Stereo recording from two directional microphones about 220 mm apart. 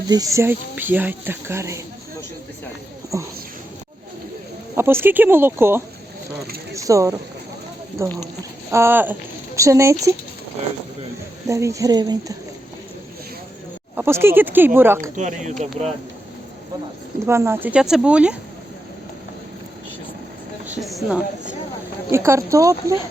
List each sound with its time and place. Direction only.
0.1 s speech: 15° right (ahead or behind)
4.7 s speech: 10° right (ahead or behind)
11.4 s speech: 15° right (ahead or behind)
13.9 s speech: 10° right (ahead or behind)
15.1 s speech: 35° right (ahead or behind)
17.2 s speech: 10° right (ahead or behind)
20.7 s a woman's voice: centre (ahead or behind)
22.1 s speech: 15° right (ahead or behind)